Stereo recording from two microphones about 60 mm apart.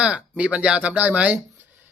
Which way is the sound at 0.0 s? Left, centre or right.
Right.